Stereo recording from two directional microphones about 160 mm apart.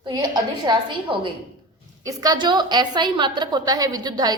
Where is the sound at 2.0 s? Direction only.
25° right (ahead or behind).